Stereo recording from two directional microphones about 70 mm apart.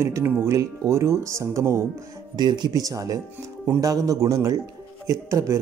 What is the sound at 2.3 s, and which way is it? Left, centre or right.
Speech, right.